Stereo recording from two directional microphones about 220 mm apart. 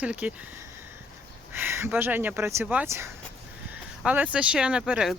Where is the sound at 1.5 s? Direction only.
10° right (ahead or behind).